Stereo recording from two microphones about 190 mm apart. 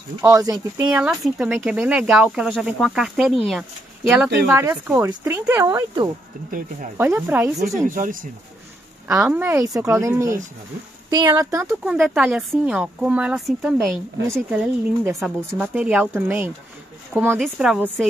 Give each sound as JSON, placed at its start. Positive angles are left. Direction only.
{"t": 0.2, "sound": "speech", "side_deg": -15}
{"t": 1.0, "sound": "speech", "side_deg": -5}
{"t": 4.6, "sound": "speech", "side_deg": -15}
{"t": 7.8, "sound": "speech", "side_deg": -45}
{"t": 9.2, "sound": "speech", "side_deg": -10}
{"t": 11.8, "sound": "speech", "side_deg": -5}